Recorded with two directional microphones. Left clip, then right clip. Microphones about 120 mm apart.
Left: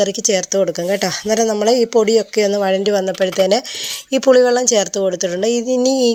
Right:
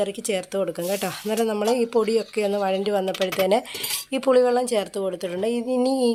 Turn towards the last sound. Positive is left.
turn(degrees=35)  # may be behind; listen again after turning